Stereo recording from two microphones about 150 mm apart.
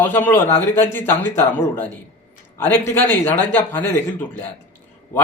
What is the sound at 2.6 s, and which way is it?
Speech, 15° left (ahead or behind).